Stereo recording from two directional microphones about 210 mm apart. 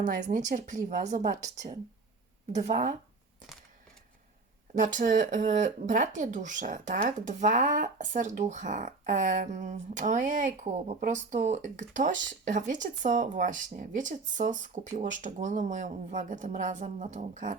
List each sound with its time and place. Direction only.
0.0 s speech: 35° right (ahead or behind)
2.5 s speech: 35° right (ahead or behind)
4.8 s speech: 40° right (ahead or behind)